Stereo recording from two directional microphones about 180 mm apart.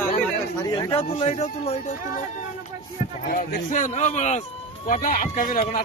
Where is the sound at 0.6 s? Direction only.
25° left (ahead or behind).